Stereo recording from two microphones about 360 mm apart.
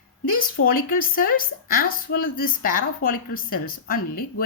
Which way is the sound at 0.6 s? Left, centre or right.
Left.